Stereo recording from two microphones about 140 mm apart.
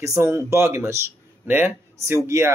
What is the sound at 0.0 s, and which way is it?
Speech, 20° right (ahead or behind).